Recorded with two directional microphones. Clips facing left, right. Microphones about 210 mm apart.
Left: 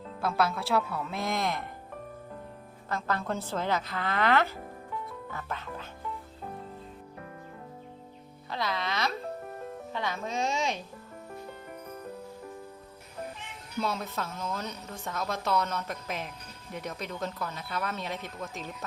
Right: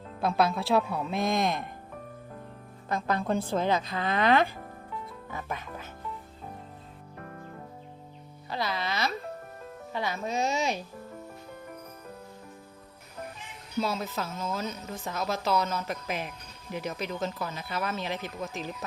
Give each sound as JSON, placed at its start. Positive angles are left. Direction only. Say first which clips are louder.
{"t": 0.2, "sound": "a woman's voice", "louder": "right 3 dB", "side_deg": -15}
{"t": 2.9, "sound": "a woman's voice", "louder": "right 4 dB", "side_deg": -15}
{"t": 8.4, "sound": "speech", "louder": "right 1 dB", "side_deg": -5}
{"t": 13.8, "sound": "speech", "louder": "left 1 dB", "side_deg": -5}